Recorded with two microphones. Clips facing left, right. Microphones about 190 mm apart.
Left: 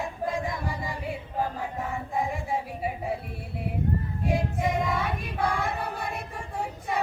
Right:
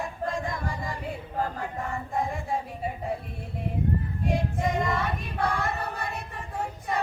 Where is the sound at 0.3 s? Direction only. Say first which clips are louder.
Left 1 dB; 5° left (ahead or behind).